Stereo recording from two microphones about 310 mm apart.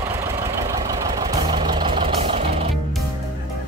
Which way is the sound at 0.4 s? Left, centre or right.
Centre.